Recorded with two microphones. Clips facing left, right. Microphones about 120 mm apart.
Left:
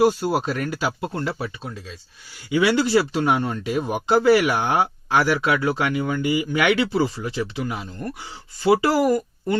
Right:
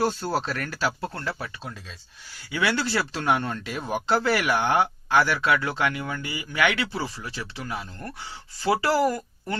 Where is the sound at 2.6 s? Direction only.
15° left (ahead or behind).